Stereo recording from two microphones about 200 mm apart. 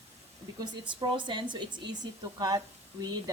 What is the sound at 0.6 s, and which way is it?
Speech, 20° right (ahead or behind).